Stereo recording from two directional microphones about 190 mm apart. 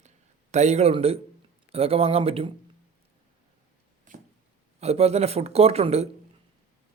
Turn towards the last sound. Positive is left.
turn(degrees=-35)  # may be behind; listen again after turning